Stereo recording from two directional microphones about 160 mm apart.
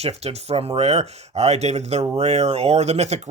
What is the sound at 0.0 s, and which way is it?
Speech, 40° right (ahead or behind).